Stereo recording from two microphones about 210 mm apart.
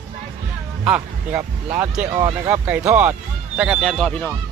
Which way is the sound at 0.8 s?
5° right (ahead or behind).